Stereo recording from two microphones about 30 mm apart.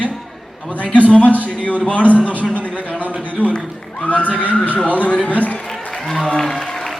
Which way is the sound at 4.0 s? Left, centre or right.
Left.